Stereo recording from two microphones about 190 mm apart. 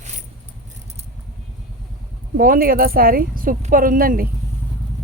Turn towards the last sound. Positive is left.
turn(degrees=-50)  # may be behind; listen again after turning